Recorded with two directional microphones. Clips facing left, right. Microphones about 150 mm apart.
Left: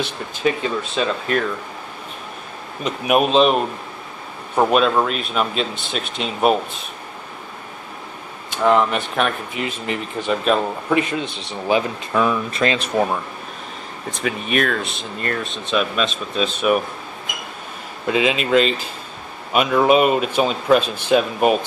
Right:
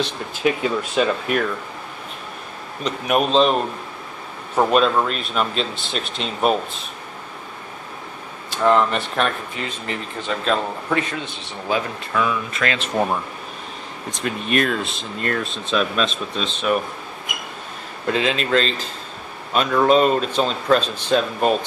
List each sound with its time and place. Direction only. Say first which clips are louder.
0.0 s speech: even; 5° right (ahead or behind)
2.8 s speech: left 2 dB; 10° left (ahead or behind)
8.6 s speech: left 1 dB; 5° left (ahead or behind)
12.2 s speech: left 3 dB; 30° left (ahead or behind)
12.7 s speech: left 3 dB; 15° left (ahead or behind)
14.1 s speech: even; 5° left (ahead or behind)
18.0 s speech: left 2 dB; 5° left (ahead or behind)